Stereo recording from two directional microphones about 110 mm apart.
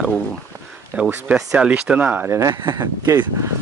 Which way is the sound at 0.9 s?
10° right (ahead or behind).